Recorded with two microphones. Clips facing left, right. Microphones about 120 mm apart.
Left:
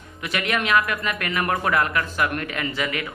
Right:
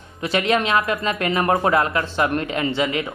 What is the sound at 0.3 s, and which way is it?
Speech, 30° right (ahead or behind).